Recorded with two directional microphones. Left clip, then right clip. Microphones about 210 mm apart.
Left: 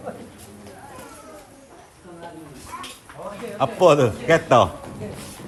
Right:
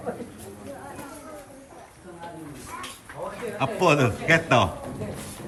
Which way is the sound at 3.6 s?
10° left (ahead or behind).